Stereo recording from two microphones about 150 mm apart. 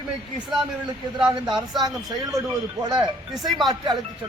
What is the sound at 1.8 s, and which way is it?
Speech, 25° right (ahead or behind).